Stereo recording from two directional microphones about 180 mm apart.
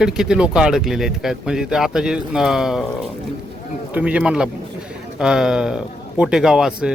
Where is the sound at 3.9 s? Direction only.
5° right (ahead or behind).